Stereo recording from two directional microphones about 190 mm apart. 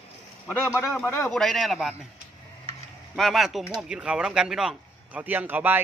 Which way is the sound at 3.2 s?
Centre (ahead or behind).